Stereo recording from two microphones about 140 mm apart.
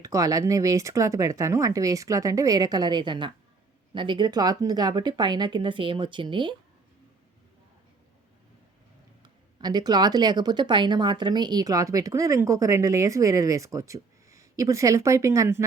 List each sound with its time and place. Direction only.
0.0 s speech: 25° right (ahead or behind)
9.2 s speech: 30° right (ahead or behind)